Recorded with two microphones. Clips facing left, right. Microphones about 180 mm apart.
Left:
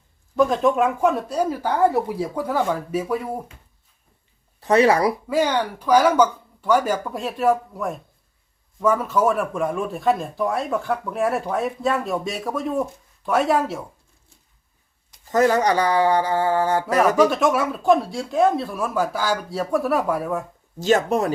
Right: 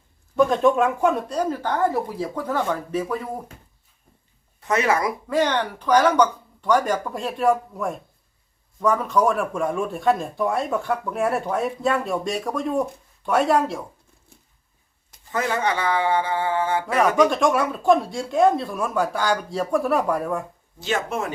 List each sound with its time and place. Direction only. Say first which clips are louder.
0.3 s speech: even; centre (ahead or behind)
4.6 s speech: left 5 dB; 35° left (ahead or behind)
5.3 s speech: left 1 dB; 10° left (ahead or behind)
15.3 s speech: left 6 dB; 40° left (ahead or behind)
17.2 s speech: left 1 dB; 5° left (ahead or behind)
20.7 s speech: left 7 dB; 40° left (ahead or behind)